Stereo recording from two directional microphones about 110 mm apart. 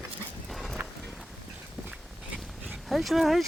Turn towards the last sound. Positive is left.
turn(degrees=0)  # may be behind; listen again after turning